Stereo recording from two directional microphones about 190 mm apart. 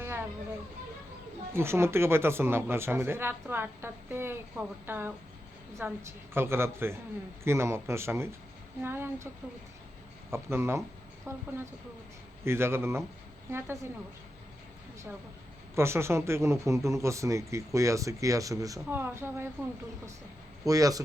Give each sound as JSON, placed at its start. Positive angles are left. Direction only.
{"t": 1.5, "sound": "speech", "side_deg": -15}
{"t": 10.3, "sound": "speech", "side_deg": -15}
{"t": 15.7, "sound": "speech", "side_deg": -15}
{"t": 20.7, "sound": "speech", "side_deg": -20}